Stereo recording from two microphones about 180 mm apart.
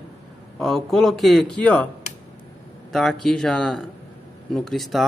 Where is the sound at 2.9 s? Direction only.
Centre (ahead or behind).